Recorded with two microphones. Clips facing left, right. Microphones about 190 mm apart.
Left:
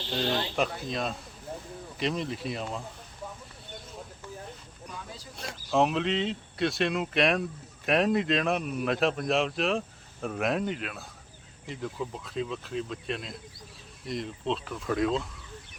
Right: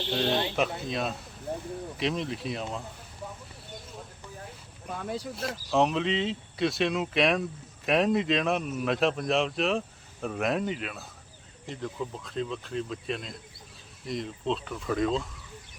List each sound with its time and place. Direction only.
0.1 s speech: centre (ahead or behind)
4.9 s speech: 60° right (ahead or behind)
5.4 s speech: centre (ahead or behind)